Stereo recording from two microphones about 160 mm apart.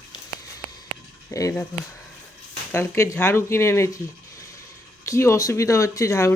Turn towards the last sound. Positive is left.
turn(degrees=20)  # may be behind; listen again after turning